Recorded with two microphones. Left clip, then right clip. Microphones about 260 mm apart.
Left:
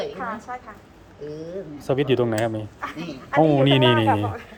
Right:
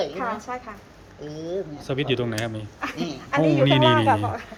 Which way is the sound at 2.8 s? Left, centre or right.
Right.